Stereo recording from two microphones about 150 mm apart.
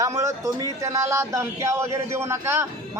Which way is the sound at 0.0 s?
20° right (ahead or behind).